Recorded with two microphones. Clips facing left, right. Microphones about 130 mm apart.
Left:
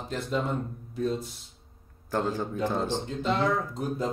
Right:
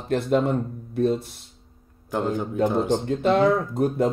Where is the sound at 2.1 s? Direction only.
15° right (ahead or behind).